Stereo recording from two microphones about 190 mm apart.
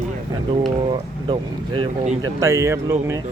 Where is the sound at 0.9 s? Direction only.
25° right (ahead or behind).